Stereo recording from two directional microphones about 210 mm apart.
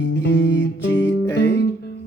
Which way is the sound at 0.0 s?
55° left (ahead or behind).